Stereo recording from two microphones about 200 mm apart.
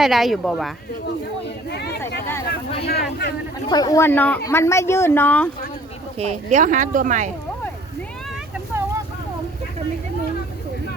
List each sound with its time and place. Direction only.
0.0 s speech: centre (ahead or behind)
1.7 s speech: 55° left (ahead or behind)
3.7 s speech: 20° left (ahead or behind)
6.1 s speech: 35° right (ahead or behind)